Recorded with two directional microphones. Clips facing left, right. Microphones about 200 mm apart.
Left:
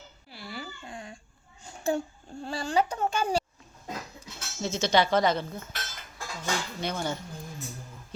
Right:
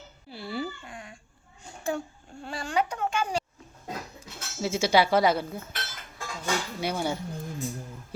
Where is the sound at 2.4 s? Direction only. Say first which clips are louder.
Left 2 dB; 30° left (ahead or behind).